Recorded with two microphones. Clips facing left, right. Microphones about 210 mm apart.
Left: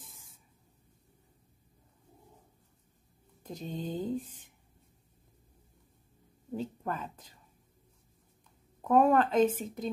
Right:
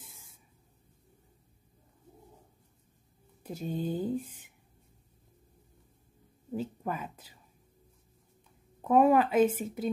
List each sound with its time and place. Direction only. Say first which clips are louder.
0.0 s spray: right 1 dB; 10° right (ahead or behind)
3.4 s speech: right 4 dB; 10° right (ahead or behind)
6.5 s speech: right 1 dB; 5° right (ahead or behind)
8.8 s speech: right 1 dB; 5° right (ahead or behind)